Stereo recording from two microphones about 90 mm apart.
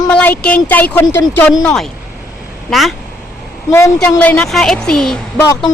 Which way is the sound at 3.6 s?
35° left (ahead or behind).